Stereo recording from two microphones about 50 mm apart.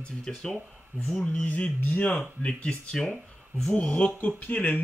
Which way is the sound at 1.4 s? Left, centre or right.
Left.